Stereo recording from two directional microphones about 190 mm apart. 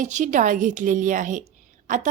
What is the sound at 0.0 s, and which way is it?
A woman's voice, 40° right (ahead or behind).